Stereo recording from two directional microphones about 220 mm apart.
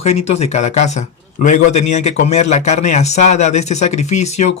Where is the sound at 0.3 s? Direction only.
30° left (ahead or behind).